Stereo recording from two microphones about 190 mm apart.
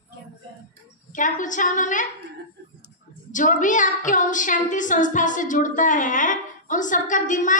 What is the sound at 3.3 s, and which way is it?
Child singing, 40° left (ahead or behind).